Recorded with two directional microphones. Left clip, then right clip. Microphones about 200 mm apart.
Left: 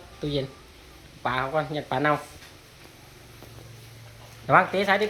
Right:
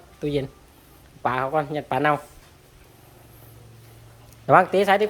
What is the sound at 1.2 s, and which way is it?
Speech, 25° right (ahead or behind).